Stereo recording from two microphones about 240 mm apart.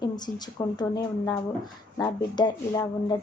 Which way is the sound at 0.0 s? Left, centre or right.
Centre.